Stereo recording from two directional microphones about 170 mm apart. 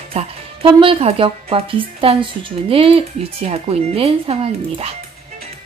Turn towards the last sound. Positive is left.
turn(degrees=-35)  # may be behind; listen again after turning